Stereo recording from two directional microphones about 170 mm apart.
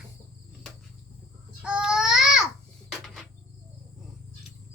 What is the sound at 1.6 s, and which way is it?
Baby cry, 5° right (ahead or behind).